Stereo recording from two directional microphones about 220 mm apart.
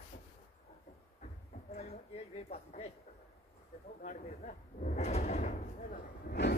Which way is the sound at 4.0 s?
30° left (ahead or behind).